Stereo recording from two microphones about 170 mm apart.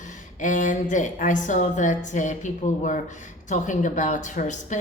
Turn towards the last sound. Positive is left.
turn(degrees=45)  # may be behind; listen again after turning